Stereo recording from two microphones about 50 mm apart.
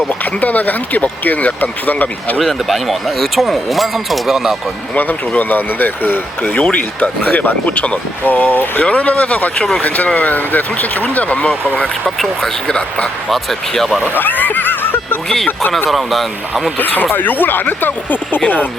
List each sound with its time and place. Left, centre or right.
0.1 s speech: left
2.4 s speech: centre
4.9 s speech: left
12.0 s speech: centre
14.0 s cat: left
15.9 s speech: centre
16.7 s speech: left